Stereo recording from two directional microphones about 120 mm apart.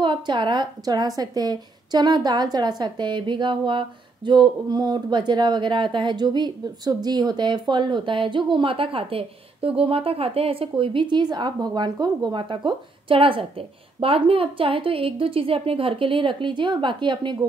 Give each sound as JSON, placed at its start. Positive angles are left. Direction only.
{"t": 0.0, "sound": "a woman's voice", "side_deg": -40}